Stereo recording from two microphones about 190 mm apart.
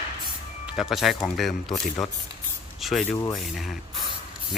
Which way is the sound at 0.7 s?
Centre (ahead or behind).